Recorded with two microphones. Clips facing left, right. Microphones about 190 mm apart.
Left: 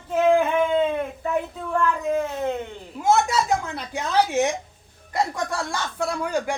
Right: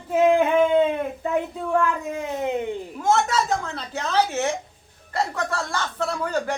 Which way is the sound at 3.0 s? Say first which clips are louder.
Left 2 dB; 10° left (ahead or behind).